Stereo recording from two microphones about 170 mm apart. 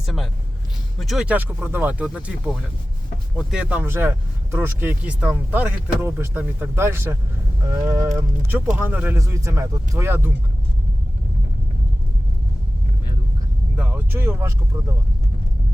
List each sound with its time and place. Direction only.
0.0 s speech: centre (ahead or behind)
13.7 s speech: 10° right (ahead or behind)